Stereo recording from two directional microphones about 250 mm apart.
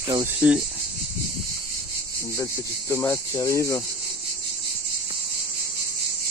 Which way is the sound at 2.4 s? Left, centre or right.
Centre.